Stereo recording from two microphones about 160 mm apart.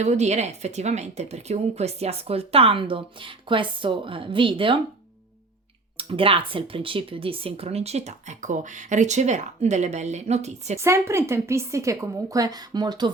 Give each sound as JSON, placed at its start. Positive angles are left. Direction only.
{"t": 0.0, "sound": "speech", "side_deg": -45}
{"t": 6.0, "sound": "speech", "side_deg": -35}
{"t": 10.8, "sound": "a woman's voice", "side_deg": -15}